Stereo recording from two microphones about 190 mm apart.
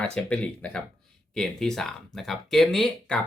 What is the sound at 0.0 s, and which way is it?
Speech, 5° left (ahead or behind).